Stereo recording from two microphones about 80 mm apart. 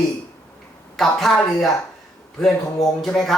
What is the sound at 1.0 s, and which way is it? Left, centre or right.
Speech, centre.